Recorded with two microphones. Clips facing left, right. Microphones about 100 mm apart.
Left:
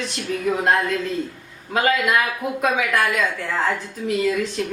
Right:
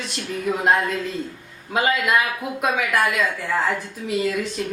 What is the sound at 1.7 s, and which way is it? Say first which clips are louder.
A woman's voice: left 1 dB; 5° right (ahead or behind).